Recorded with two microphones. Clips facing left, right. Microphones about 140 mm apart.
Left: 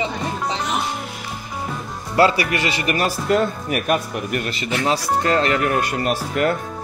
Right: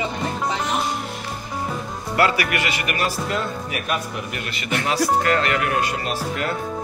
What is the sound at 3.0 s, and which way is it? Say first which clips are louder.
Speech: left 7 dB; 50° left (ahead or behind).